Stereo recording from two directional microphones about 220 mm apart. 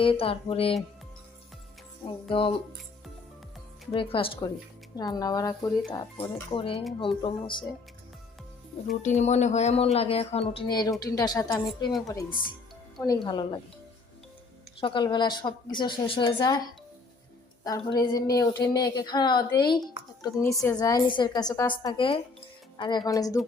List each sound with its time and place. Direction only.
0.0 s a woman's voice: 25° left (ahead or behind)
2.3 s a woman's voice: 25° left (ahead or behind)
3.9 s a woman's voice: 25° left (ahead or behind)
9.0 s a woman's voice: 30° left (ahead or behind)
14.8 s a woman's voice: 20° left (ahead or behind)